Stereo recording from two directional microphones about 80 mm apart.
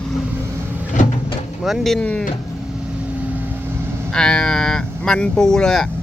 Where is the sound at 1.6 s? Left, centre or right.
Centre.